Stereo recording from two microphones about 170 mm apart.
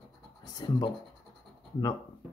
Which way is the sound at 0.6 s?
20° left (ahead or behind).